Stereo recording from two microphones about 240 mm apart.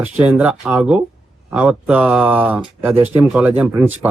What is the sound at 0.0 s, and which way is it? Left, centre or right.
Speech, centre.